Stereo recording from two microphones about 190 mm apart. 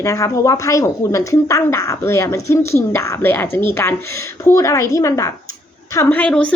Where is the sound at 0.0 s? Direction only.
15° left (ahead or behind).